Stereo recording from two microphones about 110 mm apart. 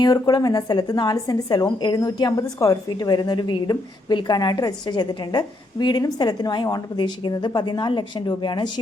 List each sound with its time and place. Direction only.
0.0 s a woman's voice: 40° left (ahead or behind)